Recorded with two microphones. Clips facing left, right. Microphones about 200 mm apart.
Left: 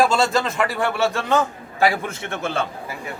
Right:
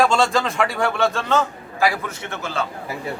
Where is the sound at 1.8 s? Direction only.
30° left (ahead or behind).